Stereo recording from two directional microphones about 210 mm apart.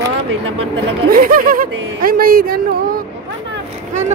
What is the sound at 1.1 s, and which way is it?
Speech, 40° right (ahead or behind).